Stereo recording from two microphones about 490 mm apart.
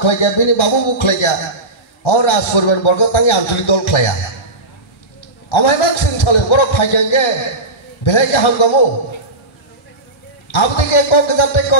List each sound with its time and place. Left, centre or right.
0.0 s a man's voice: left
5.5 s a man's voice: left
10.5 s a man's voice: left